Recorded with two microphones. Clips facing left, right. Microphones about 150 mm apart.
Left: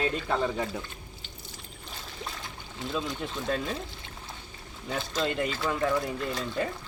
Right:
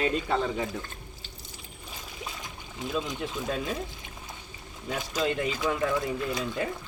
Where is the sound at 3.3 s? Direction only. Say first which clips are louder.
Left 1 dB; 5° right (ahead or behind).